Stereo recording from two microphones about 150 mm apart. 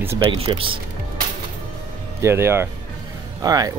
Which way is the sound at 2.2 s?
15° right (ahead or behind).